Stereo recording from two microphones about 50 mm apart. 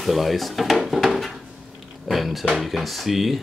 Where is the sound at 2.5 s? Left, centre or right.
Centre.